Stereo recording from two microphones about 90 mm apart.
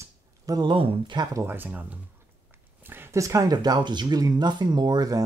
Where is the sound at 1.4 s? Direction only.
20° right (ahead or behind).